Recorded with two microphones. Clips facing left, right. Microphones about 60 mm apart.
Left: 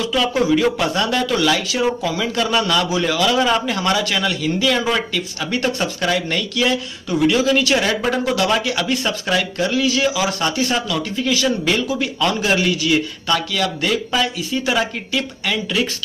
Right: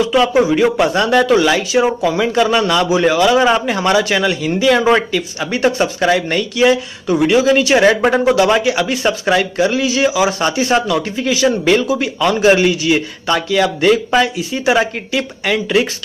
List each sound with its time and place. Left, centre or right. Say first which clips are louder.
0.0 s a man's voice: right 6 dB; right
1.0 s speech: right 7 dB; right
1.3 s speech: right 6 dB; centre
2.0 s a man's voice: right 7 dB; right
4.7 s speech: right 7 dB; right
5.1 s a man's voice: right 4 dB; right
7.8 s a man's voice: right 8 dB; right; by 10.6 s centre
10.7 s a man's voice: right 6 dB; right